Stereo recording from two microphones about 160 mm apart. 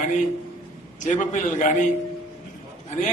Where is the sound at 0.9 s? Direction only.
50° left (ahead or behind).